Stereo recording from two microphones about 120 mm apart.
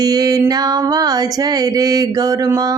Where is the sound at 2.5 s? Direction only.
30° right (ahead or behind).